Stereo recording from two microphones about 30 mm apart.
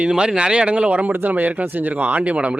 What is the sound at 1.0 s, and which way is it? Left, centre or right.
Speech, right.